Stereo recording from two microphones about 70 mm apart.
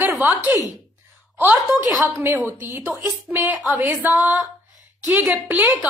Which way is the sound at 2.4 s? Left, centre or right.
Right.